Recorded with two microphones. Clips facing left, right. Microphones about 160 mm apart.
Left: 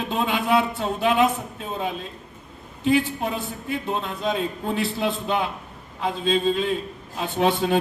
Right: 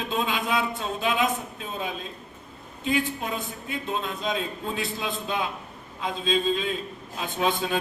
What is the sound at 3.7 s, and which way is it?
A man's voice, 65° left (ahead or behind).